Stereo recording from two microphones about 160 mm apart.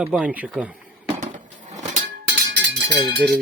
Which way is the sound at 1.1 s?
50° right (ahead or behind).